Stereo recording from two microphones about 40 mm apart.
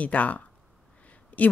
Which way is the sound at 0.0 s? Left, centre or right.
Left.